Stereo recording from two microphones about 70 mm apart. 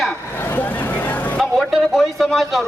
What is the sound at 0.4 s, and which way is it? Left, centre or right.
Vehicle, left.